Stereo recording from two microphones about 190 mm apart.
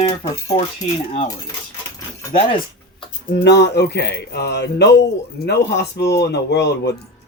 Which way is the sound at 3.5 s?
60° left (ahead or behind).